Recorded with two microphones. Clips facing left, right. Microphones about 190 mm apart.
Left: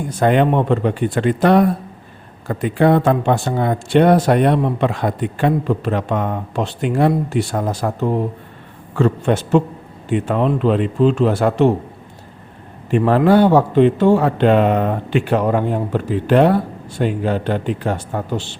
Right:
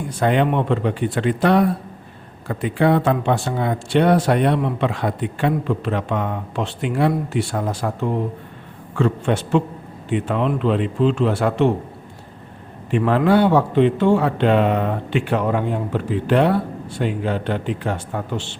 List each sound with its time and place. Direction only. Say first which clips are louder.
0.2 s a man's voice: left 3 dB; 45° left (ahead or behind)
12.9 s a man's voice: left 3 dB; 40° left (ahead or behind)